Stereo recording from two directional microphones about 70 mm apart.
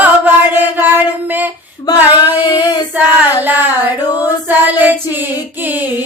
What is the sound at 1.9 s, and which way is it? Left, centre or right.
Female singing, left.